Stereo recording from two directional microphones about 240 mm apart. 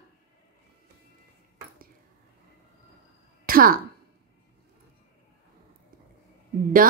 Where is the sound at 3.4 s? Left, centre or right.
Right.